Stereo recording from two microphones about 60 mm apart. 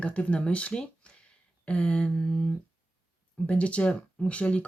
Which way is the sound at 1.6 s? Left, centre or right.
Centre.